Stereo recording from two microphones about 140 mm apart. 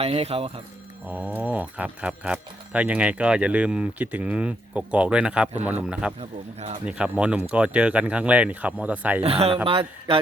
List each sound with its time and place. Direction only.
0.0 s speech: 45° right (ahead or behind)
1.0 s speech: 10° right (ahead or behind)
6.1 s speech: 50° right (ahead or behind)
6.8 s speech: 5° right (ahead or behind)
9.2 s speech: 45° right (ahead or behind)